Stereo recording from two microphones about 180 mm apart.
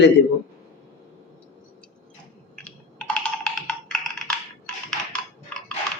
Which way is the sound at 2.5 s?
5° left (ahead or behind).